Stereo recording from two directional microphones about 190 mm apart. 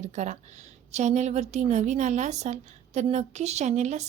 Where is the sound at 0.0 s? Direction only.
40° right (ahead or behind).